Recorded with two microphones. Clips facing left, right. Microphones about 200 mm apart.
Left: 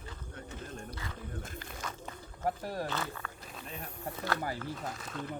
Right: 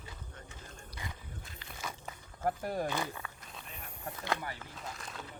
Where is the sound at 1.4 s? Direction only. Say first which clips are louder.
Left 9 dB; 50° left (ahead or behind).